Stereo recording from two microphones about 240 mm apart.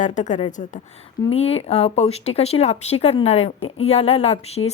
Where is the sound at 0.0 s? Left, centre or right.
Left.